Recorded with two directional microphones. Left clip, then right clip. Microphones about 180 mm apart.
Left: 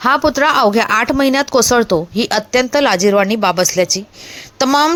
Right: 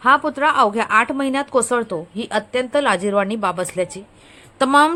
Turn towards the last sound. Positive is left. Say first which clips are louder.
# left 1 dB
turn(degrees=25)  # may be behind; listen again after turning